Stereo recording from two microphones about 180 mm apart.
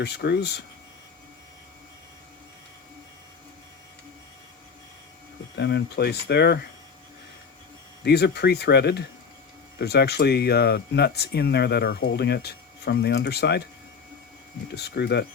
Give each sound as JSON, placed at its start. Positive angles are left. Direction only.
{"t": 0.0, "sound": "speech", "side_deg": 70}
{"t": 5.5, "sound": "speech", "side_deg": 70}
{"t": 8.0, "sound": "speech", "side_deg": 65}
{"t": 14.8, "sound": "speech", "side_deg": 65}